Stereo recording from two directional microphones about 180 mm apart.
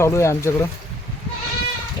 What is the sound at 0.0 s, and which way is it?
Speech, 15° left (ahead or behind).